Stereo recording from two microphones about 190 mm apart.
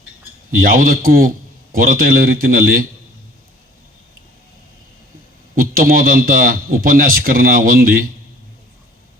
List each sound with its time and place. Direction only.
0.5 s speech: 50° right (ahead or behind)
5.5 s speech: 50° right (ahead or behind)